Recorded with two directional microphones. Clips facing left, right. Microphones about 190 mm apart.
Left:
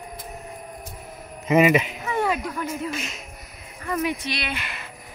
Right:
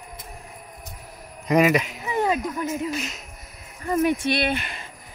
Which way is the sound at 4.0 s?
50° right (ahead or behind).